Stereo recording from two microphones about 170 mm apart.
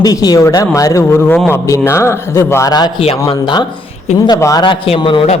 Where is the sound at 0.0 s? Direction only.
20° left (ahead or behind).